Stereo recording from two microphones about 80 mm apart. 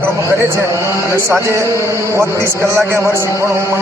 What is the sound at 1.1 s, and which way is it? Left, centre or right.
A man's voice, right.